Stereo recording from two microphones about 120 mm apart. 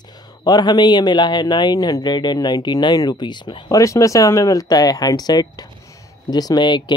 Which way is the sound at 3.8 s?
25° left (ahead or behind).